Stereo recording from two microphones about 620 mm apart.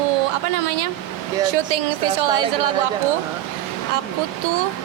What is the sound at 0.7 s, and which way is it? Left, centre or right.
A woman's voice, right.